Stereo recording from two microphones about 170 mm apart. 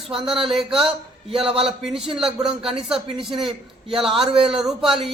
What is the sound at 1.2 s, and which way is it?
Speech, 35° right (ahead or behind).